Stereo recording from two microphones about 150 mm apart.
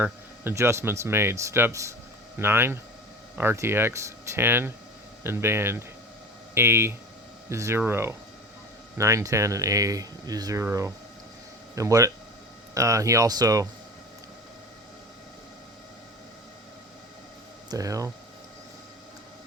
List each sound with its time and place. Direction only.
0.0 s speech: 15° right (ahead or behind)
17.7 s speech: 20° right (ahead or behind)